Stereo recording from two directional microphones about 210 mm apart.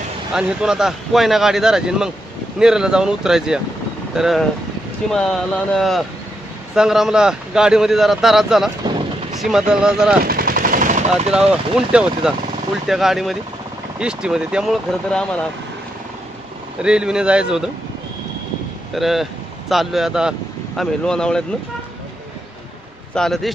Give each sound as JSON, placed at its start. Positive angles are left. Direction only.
{"t": 0.3, "sound": "speech", "side_deg": -5}
{"t": 10.2, "sound": "machine gun", "side_deg": -45}
{"t": 11.3, "sound": "speech", "side_deg": -5}
{"t": 16.8, "sound": "speech", "side_deg": -5}
{"t": 18.9, "sound": "speech", "side_deg": 0}
{"t": 23.1, "sound": "speech", "side_deg": 0}